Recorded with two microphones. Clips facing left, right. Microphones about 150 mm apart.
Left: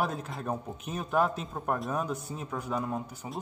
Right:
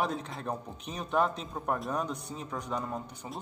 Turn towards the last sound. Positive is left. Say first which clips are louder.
# left 3 dB
turn(degrees=5)  # may be behind; listen again after turning